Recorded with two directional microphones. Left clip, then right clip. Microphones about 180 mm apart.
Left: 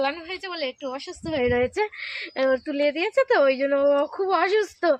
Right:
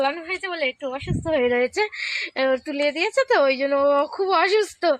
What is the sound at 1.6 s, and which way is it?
Speech, 5° right (ahead or behind).